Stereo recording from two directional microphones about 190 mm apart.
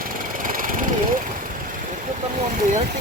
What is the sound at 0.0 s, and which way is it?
Vehicle, 45° right (ahead or behind).